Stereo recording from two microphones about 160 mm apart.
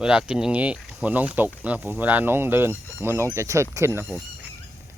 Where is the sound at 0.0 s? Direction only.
5° right (ahead or behind).